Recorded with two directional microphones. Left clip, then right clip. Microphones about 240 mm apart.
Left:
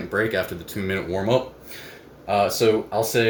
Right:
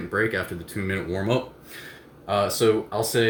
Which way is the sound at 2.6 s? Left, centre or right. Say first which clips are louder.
Left 2 dB; centre.